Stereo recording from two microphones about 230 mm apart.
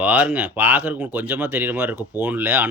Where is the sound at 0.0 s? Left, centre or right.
Centre.